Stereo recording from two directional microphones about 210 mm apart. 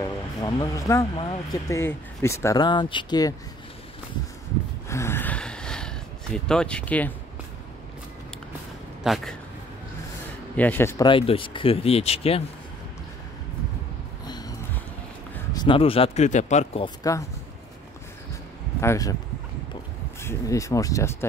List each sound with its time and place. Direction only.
0.0 s speech: 20° left (ahead or behind)
4.8 s a sound: 15° left (ahead or behind)
9.0 s speech: centre (ahead or behind)
10.5 s speech: 10° left (ahead or behind)
11.1 s speech: 25° left (ahead or behind)
14.2 s snort: 20° left (ahead or behind)
15.5 s speech: 20° left (ahead or behind)
17.0 s speech: 15° left (ahead or behind)
18.8 s speech: 15° left (ahead or behind)
20.2 s speech: 15° left (ahead or behind)